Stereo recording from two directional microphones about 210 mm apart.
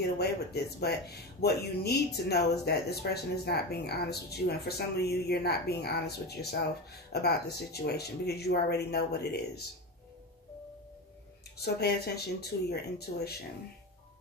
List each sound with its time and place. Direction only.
0.2 s speech: 50° left (ahead or behind)
11.6 s speech: 50° left (ahead or behind)